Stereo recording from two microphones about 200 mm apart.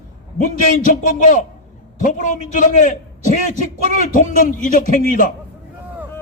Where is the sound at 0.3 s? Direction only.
40° left (ahead or behind).